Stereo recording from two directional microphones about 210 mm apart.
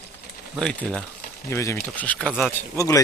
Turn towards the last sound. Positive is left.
turn(degrees=15)  # may be behind; listen again after turning